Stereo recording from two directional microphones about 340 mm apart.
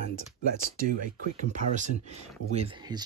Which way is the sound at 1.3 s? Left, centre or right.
Right.